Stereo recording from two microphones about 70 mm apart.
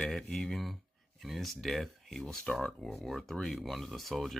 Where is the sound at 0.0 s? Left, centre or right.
Centre.